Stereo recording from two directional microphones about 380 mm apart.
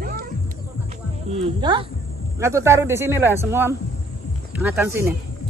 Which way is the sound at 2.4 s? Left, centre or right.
Centre.